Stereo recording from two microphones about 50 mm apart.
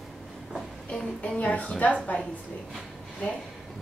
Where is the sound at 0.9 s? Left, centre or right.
Left.